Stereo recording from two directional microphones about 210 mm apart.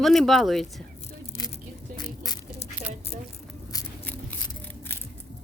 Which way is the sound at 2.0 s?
20° left (ahead or behind).